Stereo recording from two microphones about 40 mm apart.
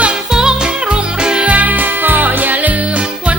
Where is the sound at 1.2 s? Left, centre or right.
Right.